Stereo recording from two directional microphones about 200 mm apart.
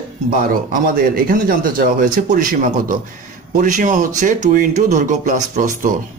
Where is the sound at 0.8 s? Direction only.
45° right (ahead or behind).